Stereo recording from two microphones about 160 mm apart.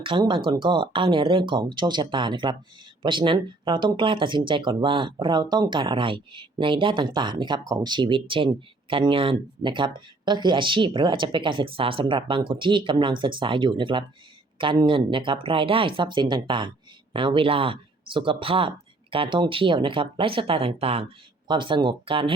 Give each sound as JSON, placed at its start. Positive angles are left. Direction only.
{"t": 0.0, "sound": "speech", "side_deg": -30}